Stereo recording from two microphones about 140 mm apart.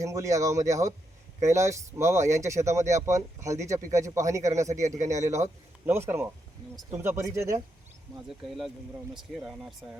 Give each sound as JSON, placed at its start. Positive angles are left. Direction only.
{"t": 0.0, "sound": "speech", "side_deg": -20}
{"t": 9.1, "sound": "speech", "side_deg": 0}